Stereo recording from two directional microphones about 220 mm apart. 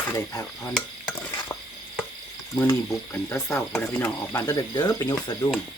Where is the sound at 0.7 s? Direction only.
5° left (ahead or behind).